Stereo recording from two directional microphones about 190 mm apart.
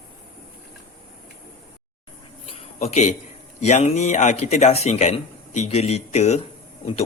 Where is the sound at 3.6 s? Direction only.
35° left (ahead or behind).